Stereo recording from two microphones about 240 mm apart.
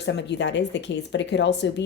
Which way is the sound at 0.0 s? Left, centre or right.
Left.